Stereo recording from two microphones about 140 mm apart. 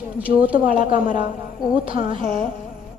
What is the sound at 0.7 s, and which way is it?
Speech, 75° left (ahead or behind).